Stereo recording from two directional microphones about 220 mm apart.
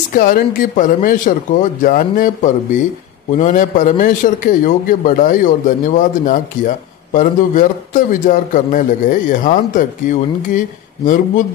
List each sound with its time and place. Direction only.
0.1 s a man's voice: 40° left (ahead or behind)